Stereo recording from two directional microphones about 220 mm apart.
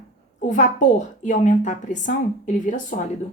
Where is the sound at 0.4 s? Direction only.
35° left (ahead or behind).